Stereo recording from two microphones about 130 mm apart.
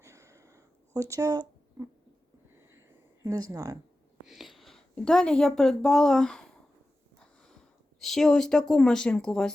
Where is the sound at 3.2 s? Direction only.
30° right (ahead or behind).